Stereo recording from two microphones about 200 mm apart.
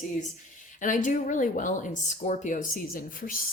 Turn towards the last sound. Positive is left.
turn(degrees=45)  # may be behind; listen again after turning